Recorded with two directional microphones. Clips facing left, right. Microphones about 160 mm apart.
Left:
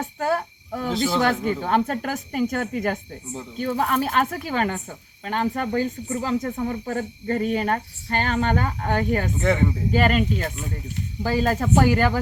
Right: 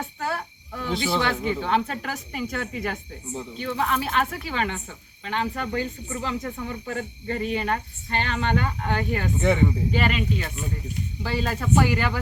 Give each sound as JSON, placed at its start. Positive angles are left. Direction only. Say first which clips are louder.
{"t": 0.0, "sound": "cricket", "louder": "left 6 dB", "side_deg": 45}
{"t": 1.6, "sound": "speech", "louder": "left 3 dB", "side_deg": 45}
{"t": 9.4, "sound": "speech", "louder": "right 2 dB", "side_deg": 0}
{"t": 9.9, "sound": "speech", "louder": "left 4 dB", "side_deg": 45}